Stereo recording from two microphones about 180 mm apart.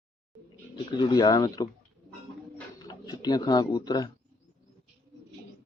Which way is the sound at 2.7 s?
20° left (ahead or behind).